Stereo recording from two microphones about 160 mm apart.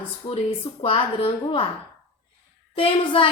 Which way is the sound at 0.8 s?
35° left (ahead or behind).